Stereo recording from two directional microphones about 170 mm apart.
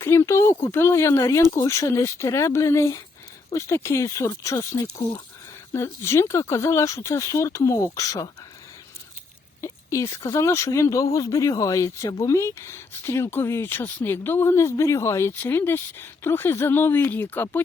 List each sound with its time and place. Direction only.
0.0 s a woman's voice: 15° left (ahead or behind)
9.6 s a woman's voice: 15° left (ahead or behind)